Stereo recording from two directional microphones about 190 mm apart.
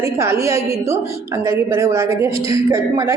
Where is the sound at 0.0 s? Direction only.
15° right (ahead or behind).